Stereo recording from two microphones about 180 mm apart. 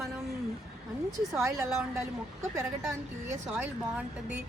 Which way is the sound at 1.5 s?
15° right (ahead or behind).